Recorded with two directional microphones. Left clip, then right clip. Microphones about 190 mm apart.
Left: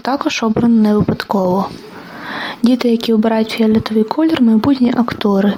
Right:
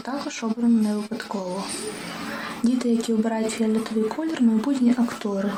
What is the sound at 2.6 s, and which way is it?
Speech, 45° left (ahead or behind).